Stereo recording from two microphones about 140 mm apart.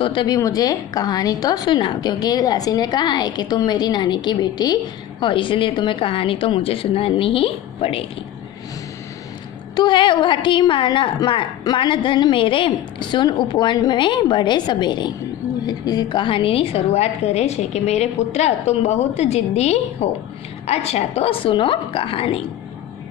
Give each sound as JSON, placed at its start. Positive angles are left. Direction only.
{"t": 0.0, "sound": "a woman's voice", "side_deg": 35}
{"t": 9.8, "sound": "a woman's voice", "side_deg": 35}